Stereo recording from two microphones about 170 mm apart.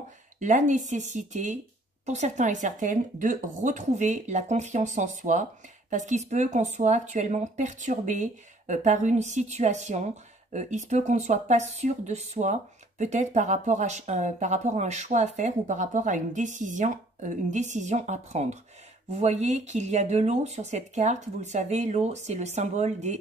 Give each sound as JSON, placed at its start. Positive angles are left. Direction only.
{"t": 0.4, "sound": "speech", "side_deg": -45}